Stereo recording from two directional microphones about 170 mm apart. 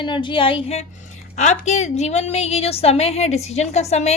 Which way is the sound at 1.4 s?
40° left (ahead or behind).